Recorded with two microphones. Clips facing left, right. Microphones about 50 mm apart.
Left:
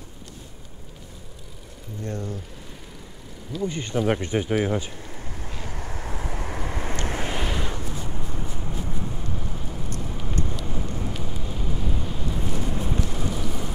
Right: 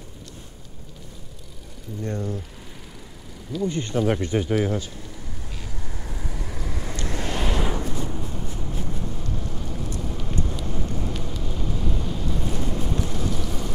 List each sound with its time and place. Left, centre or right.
2.0 s speech: centre
3.5 s a sound: centre; by 7.2 s left
7.4 s wind noise: centre
8.3 s vehicle: centre
10.0 s a sound: centre
10.6 s vehicle: centre